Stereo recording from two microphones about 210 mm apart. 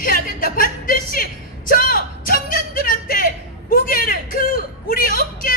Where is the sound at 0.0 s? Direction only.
40° left (ahead or behind).